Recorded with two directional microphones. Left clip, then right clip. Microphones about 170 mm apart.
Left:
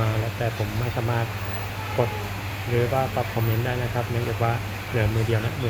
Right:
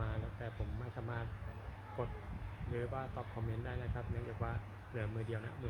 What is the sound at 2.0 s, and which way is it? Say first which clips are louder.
Speech: left 19 dB; 15° right (ahead or behind).